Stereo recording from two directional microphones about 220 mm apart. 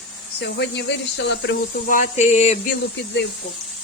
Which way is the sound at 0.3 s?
50° left (ahead or behind).